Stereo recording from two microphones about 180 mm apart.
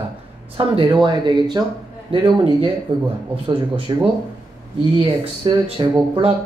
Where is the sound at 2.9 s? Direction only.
30° right (ahead or behind).